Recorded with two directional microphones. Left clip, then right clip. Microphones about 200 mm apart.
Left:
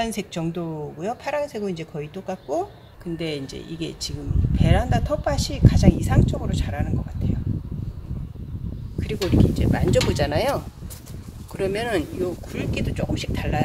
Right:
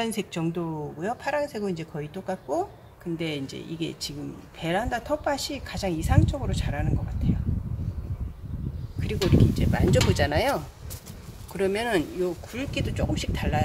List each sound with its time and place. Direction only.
0.0 s a woman's voice: centre (ahead or behind)
9.0 s a woman's voice: 5° left (ahead or behind)